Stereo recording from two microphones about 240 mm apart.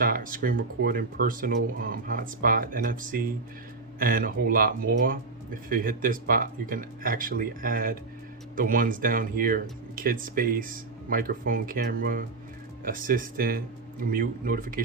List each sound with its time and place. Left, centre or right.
0.0 s speech: right